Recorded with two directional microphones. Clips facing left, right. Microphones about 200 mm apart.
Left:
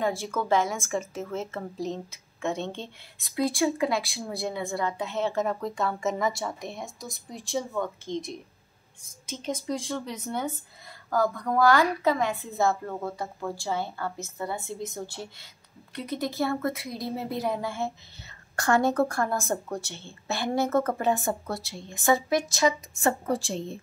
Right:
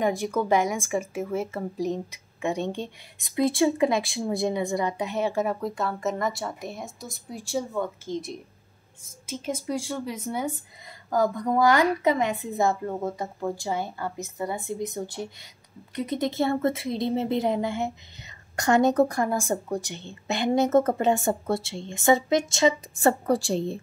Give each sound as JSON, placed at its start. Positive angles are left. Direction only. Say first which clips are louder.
{"t": 0.0, "sound": "a woman's voice", "louder": "right 3 dB", "side_deg": -15}